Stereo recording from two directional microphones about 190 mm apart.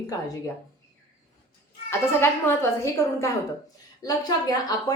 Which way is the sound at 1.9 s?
15° left (ahead or behind).